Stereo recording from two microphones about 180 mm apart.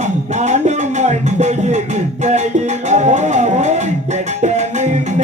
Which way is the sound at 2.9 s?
40° right (ahead or behind).